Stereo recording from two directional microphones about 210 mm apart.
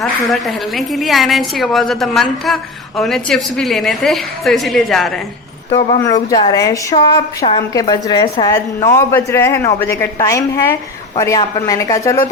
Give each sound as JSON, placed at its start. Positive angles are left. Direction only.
{"t": 0.0, "sound": "a woman's voice", "side_deg": 0}
{"t": 6.3, "sound": "a woman's voice", "side_deg": 15}